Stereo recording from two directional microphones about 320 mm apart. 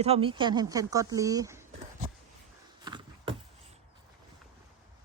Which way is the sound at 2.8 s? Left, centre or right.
Centre.